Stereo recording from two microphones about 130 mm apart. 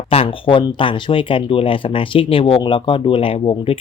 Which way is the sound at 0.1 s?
45° left (ahead or behind).